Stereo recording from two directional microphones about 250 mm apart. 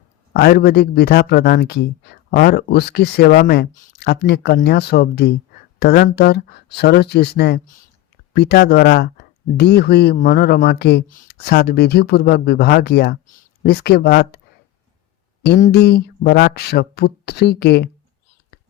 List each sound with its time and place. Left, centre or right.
0.3 s a man's voice: left
15.4 s a man's voice: left